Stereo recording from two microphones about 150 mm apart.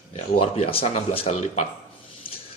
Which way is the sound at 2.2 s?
35° left (ahead or behind).